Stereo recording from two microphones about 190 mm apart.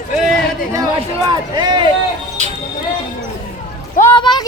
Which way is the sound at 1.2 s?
25° right (ahead or behind).